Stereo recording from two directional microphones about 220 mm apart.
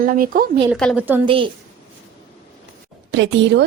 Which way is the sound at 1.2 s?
25° right (ahead or behind).